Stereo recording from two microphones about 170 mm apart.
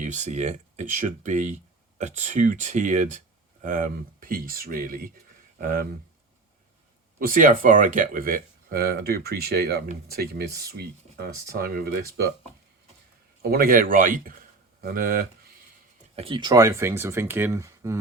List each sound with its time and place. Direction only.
0.0 s speech: 45° right (ahead or behind)
7.2 s speech: 50° right (ahead or behind)
13.4 s a man's voice: 60° right (ahead or behind)
16.1 s speech: 30° right (ahead or behind)